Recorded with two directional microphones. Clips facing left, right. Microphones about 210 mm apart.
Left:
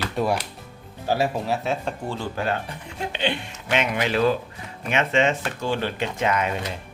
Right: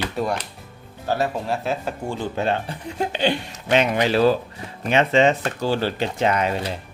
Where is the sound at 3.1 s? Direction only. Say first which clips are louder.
Right 2 dB; 40° right (ahead or behind).